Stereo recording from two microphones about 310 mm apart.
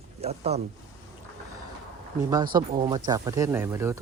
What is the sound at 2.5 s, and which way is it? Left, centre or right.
Speech, centre.